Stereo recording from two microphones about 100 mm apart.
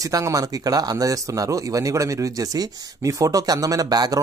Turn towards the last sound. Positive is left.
turn(degrees=-40)  # may be behind; listen again after turning